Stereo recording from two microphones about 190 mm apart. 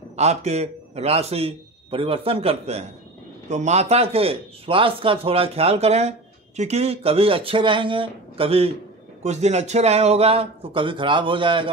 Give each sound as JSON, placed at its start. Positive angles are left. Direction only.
{"t": 0.1, "sound": "speech", "side_deg": -35}